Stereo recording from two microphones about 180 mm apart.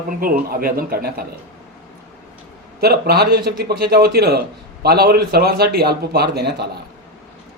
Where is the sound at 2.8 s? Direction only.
60° right (ahead or behind).